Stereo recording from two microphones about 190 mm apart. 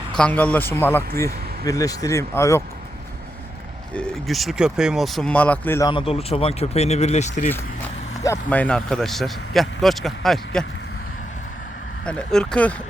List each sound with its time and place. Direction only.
0.2 s speech: 5° left (ahead or behind)
3.9 s speech: centre (ahead or behind)
5.9 s speech: 30° left (ahead or behind)
8.2 s speech: 10° left (ahead or behind)
12.0 s speech: 5° left (ahead or behind)